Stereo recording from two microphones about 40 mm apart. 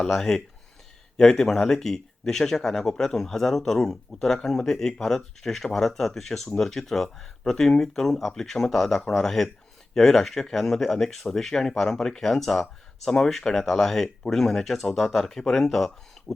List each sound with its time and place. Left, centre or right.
0.1 s speech: centre
7.8 s speech: centre
16.2 s a sound: centre